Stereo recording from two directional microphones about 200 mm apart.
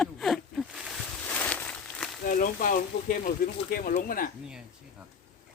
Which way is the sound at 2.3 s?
40° left (ahead or behind).